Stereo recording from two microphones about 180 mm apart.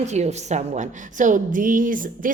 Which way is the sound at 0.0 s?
40° right (ahead or behind).